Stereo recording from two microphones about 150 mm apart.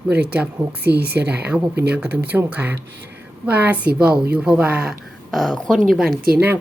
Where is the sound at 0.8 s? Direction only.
90° right.